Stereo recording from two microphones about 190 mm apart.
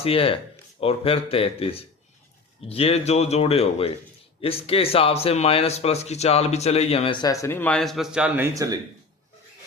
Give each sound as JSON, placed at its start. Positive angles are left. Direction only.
{"t": 0.0, "sound": "speech", "side_deg": 30}
{"t": 8.5, "sound": "speech", "side_deg": -15}